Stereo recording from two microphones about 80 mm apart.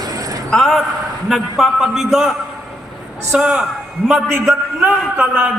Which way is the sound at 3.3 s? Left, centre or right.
Centre.